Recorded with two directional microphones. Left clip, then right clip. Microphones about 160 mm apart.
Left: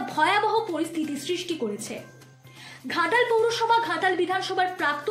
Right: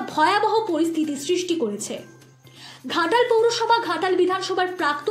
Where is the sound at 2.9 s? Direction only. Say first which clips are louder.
Right 3 dB; 40° right (ahead or behind).